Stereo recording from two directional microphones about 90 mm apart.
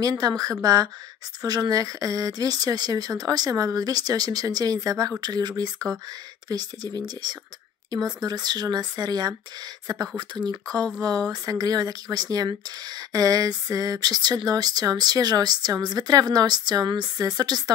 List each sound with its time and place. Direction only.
0.0 s speech: 45° right (ahead or behind)
7.9 s speech: 50° right (ahead or behind)